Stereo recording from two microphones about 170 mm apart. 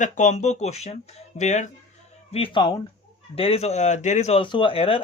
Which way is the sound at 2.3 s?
30° left (ahead or behind).